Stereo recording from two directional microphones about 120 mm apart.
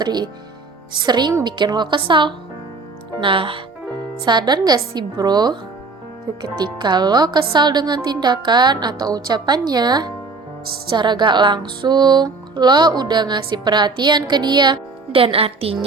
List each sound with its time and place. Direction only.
0.0 s speech: 35° right (ahead or behind); by 15.8 s 55° right (ahead or behind)